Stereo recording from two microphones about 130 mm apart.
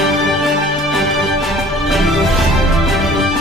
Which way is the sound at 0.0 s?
Centre (ahead or behind).